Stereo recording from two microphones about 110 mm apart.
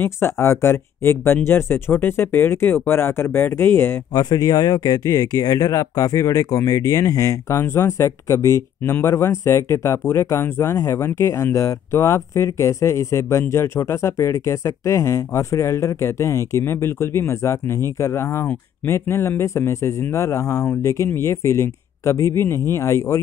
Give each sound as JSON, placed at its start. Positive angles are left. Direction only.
{"t": 0.0, "sound": "speech", "side_deg": 25}
{"t": 4.1, "sound": "speech", "side_deg": 35}